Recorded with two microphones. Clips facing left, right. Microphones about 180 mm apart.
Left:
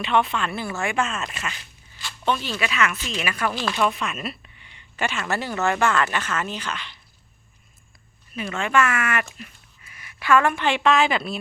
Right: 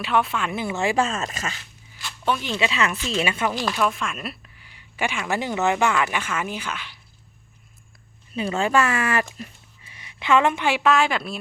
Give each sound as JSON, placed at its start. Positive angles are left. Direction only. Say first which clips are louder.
{"t": 0.0, "sound": "speech", "louder": "left 1 dB", "side_deg": -5}
{"t": 0.9, "sound": "speech", "louder": "right 4 dB", "side_deg": -35}
{"t": 2.0, "sound": "a sound", "louder": "even", "side_deg": -5}
{"t": 2.4, "sound": "speech", "louder": "right 1 dB", "side_deg": -20}
{"t": 3.8, "sound": "speech", "louder": "left 1 dB", "side_deg": 0}
{"t": 8.3, "sound": "speech", "louder": "right 3 dB", "side_deg": -30}
{"t": 10.7, "sound": "a woman's voice", "louder": "even", "side_deg": -5}